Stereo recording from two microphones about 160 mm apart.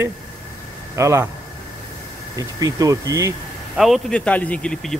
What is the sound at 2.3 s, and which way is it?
Speech, 20° right (ahead or behind).